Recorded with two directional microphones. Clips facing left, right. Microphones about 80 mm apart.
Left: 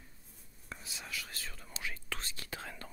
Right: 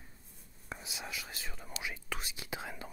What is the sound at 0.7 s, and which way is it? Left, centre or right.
Whispering, centre.